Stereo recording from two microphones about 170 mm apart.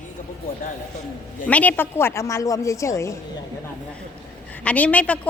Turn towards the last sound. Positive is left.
turn(degrees=10)  # may be behind; listen again after turning